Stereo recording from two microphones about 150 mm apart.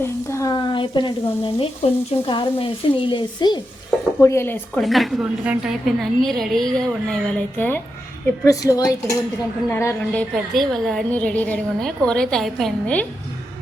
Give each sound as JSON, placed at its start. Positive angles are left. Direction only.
{"t": 0.0, "sound": "a sound", "side_deg": 20}
{"t": 1.5, "sound": "speech", "side_deg": 40}
{"t": 4.2, "sound": "a woman's voice", "side_deg": 20}
{"t": 4.8, "sound": "a woman's voice", "side_deg": 0}
{"t": 8.4, "sound": "a woman's voice", "side_deg": 25}